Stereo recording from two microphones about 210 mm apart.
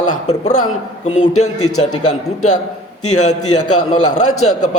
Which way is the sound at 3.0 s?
90° left.